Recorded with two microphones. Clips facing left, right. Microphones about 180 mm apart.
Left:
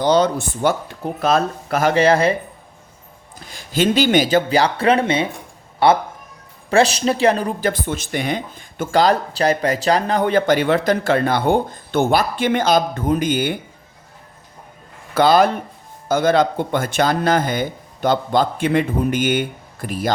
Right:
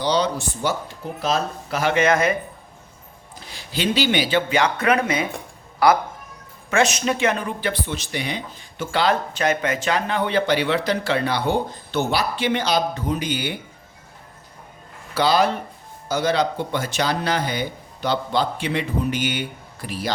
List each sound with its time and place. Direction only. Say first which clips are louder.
0.0 s speech: left 5 dB; 50° left (ahead or behind)
1.9 s speech: left 3 dB; 35° left (ahead or behind)
3.5 s speech: left 6 dB; 45° left (ahead or behind)
15.1 s speech: left 5 dB; 50° left (ahead or behind)